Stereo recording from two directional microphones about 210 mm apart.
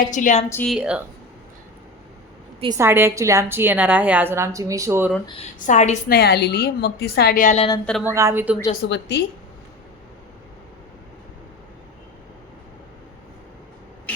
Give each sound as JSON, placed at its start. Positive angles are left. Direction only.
{"t": 0.0, "sound": "a woman's voice", "side_deg": 40}
{"t": 0.5, "sound": "speech", "side_deg": 0}
{"t": 2.6, "sound": "a woman's voice", "side_deg": -15}
{"t": 5.5, "sound": "a woman's voice", "side_deg": 35}
{"t": 6.1, "sound": "a woman's voice", "side_deg": 50}
{"t": 8.0, "sound": "a woman's voice", "side_deg": -15}
{"t": 8.9, "sound": "a woman's voice", "side_deg": 60}